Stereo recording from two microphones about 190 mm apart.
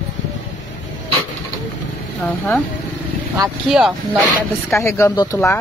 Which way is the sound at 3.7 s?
5° right (ahead or behind).